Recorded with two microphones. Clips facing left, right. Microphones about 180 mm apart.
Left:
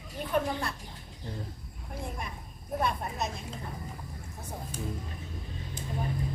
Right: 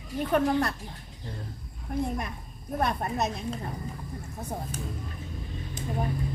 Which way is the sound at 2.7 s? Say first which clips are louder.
Right 3 dB; 65° right (ahead or behind).